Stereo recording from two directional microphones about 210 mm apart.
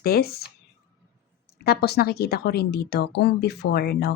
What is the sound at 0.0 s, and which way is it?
Speech, 45° left (ahead or behind).